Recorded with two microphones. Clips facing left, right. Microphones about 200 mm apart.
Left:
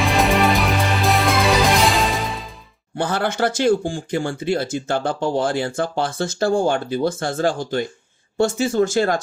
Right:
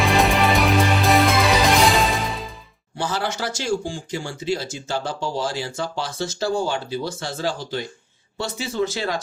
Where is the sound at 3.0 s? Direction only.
55° left (ahead or behind).